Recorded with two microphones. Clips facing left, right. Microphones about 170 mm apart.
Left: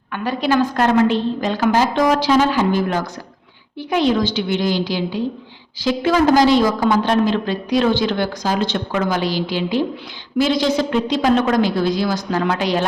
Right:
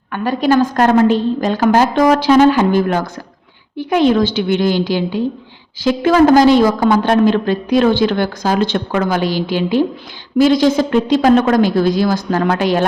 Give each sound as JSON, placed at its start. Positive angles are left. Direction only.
{"t": 0.1, "sound": "a woman's voice", "side_deg": -45}